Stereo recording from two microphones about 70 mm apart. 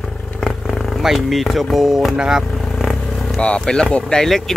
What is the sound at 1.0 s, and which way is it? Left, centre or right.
Speech, centre.